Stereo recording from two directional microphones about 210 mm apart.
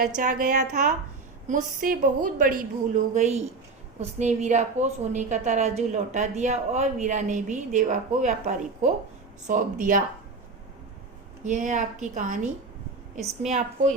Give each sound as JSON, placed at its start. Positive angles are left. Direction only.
{"t": 0.2, "sound": "a woman's voice", "side_deg": -40}
{"t": 11.4, "sound": "a woman's voice", "side_deg": -35}